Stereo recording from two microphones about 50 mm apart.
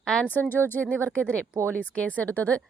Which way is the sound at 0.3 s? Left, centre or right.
Left.